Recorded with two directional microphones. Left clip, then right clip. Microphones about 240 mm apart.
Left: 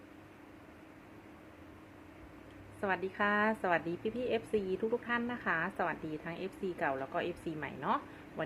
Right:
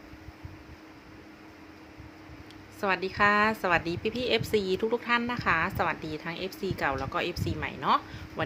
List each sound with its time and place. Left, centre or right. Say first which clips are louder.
2.8 s a woman's voice: right 8 dB; centre